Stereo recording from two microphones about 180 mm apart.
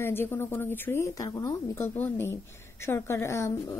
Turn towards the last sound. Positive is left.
turn(degrees=15)  # may be behind; listen again after turning